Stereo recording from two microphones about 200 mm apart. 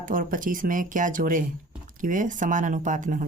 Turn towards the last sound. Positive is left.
turn(degrees=-40)  # may be behind; listen again after turning